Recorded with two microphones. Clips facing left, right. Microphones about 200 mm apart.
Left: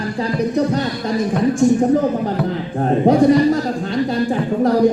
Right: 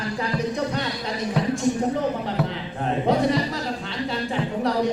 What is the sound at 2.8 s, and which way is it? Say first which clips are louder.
Speech: left 8 dB; 45° left (ahead or behind).